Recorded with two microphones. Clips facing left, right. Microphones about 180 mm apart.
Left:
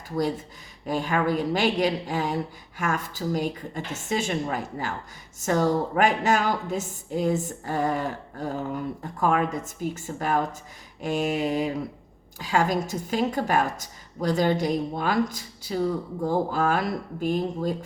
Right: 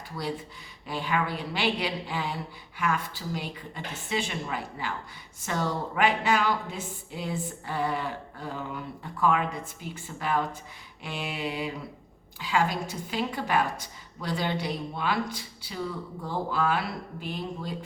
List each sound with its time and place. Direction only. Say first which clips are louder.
0.2 s a woman's voice: left 7 dB; 45° left (ahead or behind)